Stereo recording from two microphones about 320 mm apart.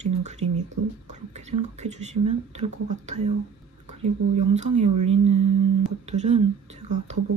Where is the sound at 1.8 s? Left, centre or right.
Right.